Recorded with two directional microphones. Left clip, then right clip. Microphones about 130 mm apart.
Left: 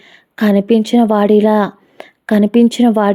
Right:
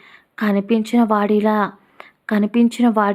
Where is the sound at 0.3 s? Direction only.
35° left (ahead or behind).